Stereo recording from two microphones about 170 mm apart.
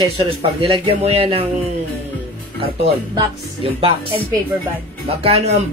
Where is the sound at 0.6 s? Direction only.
35° right (ahead or behind).